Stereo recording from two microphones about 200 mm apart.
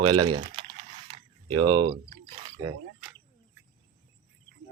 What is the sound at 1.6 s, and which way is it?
Speech, 20° right (ahead or behind).